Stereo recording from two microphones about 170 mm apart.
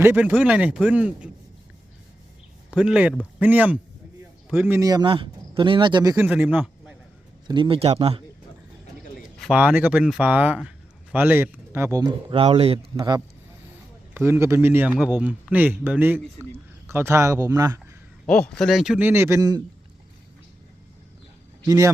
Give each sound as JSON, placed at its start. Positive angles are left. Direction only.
{"t": 0.0, "sound": "speech", "side_deg": -10}
{"t": 2.7, "sound": "speech", "side_deg": -5}
{"t": 6.2, "sound": "a man's voice", "side_deg": -10}
{"t": 7.4, "sound": "speech", "side_deg": -30}
{"t": 9.4, "sound": "speech", "side_deg": -5}
{"t": 13.0, "sound": "speech", "side_deg": -25}
{"t": 18.3, "sound": "speech", "side_deg": 5}
{"t": 21.6, "sound": "speech", "side_deg": -20}